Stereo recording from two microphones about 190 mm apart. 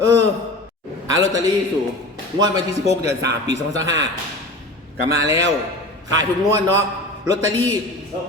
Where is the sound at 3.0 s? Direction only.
65° right (ahead or behind).